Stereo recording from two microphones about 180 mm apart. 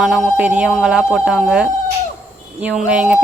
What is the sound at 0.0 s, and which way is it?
Speech, 5° right (ahead or behind).